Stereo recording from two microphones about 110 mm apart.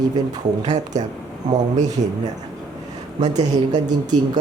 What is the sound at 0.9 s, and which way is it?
Speech, 90° right.